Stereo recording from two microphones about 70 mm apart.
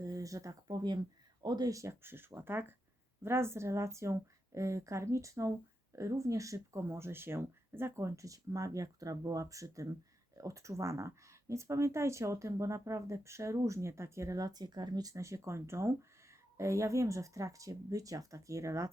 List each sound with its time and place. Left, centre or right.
0.0 s speech: right
1.4 s speech: right
1.7 s speech: right
6.8 s speech: right
15.1 s speech: right